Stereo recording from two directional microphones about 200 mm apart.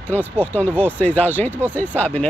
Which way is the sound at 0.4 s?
10° left (ahead or behind).